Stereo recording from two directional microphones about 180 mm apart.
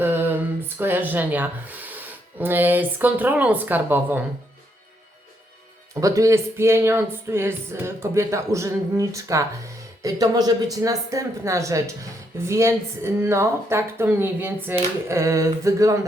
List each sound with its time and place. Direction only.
0.0 s a sound: 10° right (ahead or behind)
0.8 s speech: 10° right (ahead or behind)
5.9 s speech: 20° right (ahead or behind)